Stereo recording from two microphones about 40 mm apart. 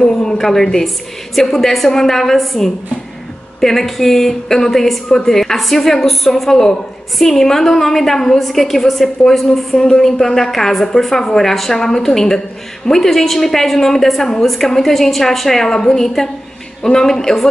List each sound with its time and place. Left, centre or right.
0.0 s a woman's voice: centre